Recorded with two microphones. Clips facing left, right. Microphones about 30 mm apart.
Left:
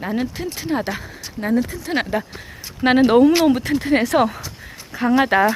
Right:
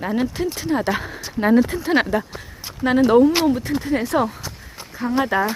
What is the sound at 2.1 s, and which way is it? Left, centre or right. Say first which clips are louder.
Speech: right 1 dB; centre.